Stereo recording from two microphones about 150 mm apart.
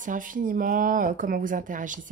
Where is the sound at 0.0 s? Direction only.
60° right (ahead or behind).